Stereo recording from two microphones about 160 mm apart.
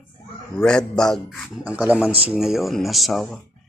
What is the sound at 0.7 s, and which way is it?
Speech, 5° left (ahead or behind).